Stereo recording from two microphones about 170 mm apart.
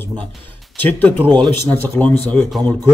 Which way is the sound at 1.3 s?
10° left (ahead or behind).